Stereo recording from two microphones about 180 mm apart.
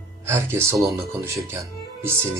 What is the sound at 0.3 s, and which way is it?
Speech, 15° right (ahead or behind).